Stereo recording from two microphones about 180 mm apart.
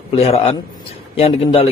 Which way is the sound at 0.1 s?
30° left (ahead or behind).